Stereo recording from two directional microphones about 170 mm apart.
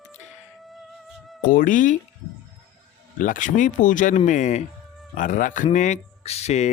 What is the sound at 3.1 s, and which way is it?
Speech, 50° left (ahead or behind).